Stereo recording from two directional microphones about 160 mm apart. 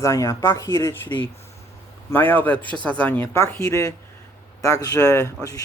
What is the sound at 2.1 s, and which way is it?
A man's voice, 10° left (ahead or behind).